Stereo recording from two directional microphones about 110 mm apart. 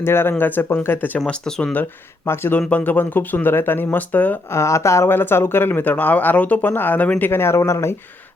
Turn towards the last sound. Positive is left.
turn(degrees=25)  # may be behind; listen again after turning